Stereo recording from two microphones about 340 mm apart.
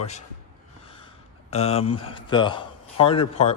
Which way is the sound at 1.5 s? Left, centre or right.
Centre.